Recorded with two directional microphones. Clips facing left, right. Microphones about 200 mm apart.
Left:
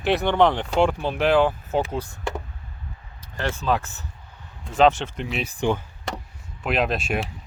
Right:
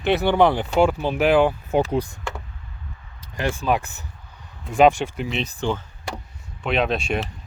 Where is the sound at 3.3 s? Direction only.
15° right (ahead or behind).